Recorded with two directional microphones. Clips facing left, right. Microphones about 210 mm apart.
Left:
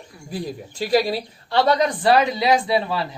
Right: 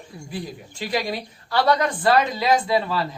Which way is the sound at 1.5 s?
20° left (ahead or behind).